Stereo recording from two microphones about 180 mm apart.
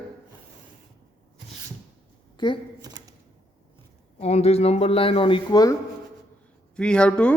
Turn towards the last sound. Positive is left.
turn(degrees=5)  # may be behind; listen again after turning